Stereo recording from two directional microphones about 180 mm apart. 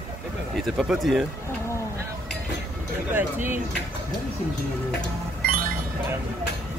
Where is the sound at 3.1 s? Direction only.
10° right (ahead or behind).